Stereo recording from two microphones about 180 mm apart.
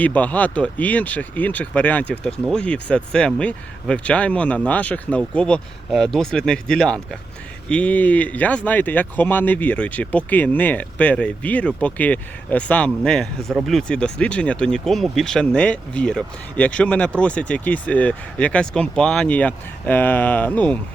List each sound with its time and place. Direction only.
0.0 s speech: 10° left (ahead or behind)